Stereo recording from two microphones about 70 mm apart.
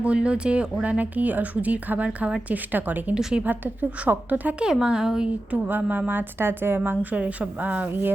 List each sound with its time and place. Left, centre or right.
0.0 s speech: centre
3.2 s speech: centre
3.4 s speech: right
4.6 s speech: centre
5.6 s speech: right